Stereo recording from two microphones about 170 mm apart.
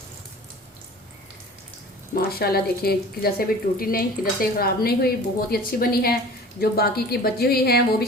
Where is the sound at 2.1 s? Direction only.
65° left (ahead or behind).